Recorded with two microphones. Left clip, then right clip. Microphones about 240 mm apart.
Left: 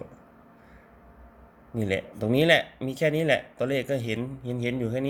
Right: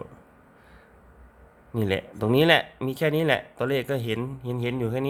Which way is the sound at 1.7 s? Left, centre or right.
Centre.